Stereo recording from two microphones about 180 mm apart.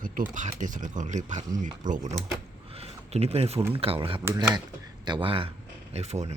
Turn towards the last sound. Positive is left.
turn(degrees=-35)  # may be behind; listen again after turning